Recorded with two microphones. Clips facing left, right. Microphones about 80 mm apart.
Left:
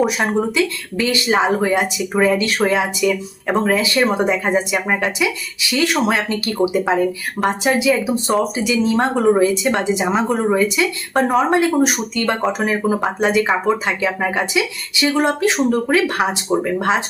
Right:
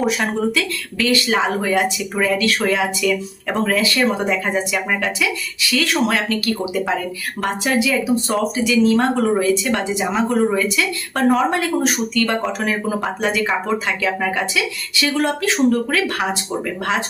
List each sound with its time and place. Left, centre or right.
0.0 s speech: centre